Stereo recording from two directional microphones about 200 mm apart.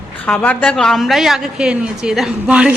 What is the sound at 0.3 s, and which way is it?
A woman's voice, 5° left (ahead or behind).